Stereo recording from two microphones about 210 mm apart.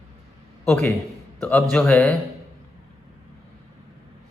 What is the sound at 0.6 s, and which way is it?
A man's voice, 10° left (ahead or behind).